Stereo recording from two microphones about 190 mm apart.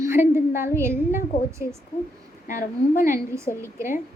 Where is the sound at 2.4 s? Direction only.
45° left (ahead or behind).